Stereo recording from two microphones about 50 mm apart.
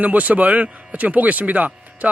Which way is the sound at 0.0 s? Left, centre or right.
Right.